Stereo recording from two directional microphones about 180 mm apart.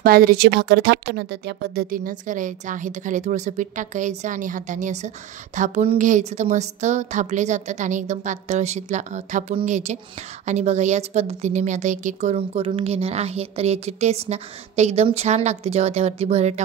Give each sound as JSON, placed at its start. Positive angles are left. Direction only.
{"t": 0.0, "sound": "speech", "side_deg": -55}